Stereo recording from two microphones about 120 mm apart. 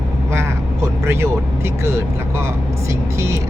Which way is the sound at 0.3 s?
20° right (ahead or behind).